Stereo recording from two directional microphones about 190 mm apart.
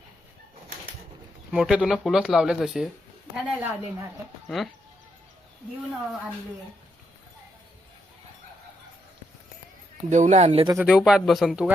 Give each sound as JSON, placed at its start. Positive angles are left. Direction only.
{"t": 1.5, "sound": "speech", "side_deg": -5}
{"t": 4.4, "sound": "speech", "side_deg": 0}
{"t": 10.1, "sound": "speech", "side_deg": -40}
{"t": 10.8, "sound": "speech", "side_deg": -5}